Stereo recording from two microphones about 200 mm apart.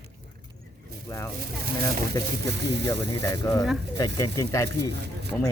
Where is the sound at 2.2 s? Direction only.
20° left (ahead or behind).